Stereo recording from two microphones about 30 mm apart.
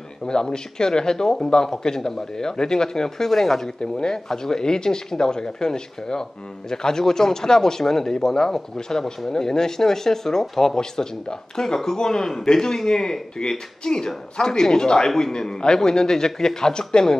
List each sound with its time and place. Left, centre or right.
0.2 s speech: left
3.8 s speech: left
15.0 s speech: centre
15.3 s speech: left